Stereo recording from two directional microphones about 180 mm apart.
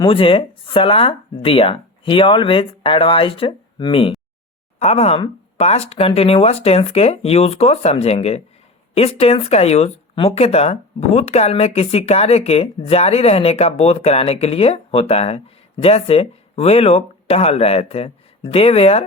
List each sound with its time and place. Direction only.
0.0 s speech: 30° left (ahead or behind)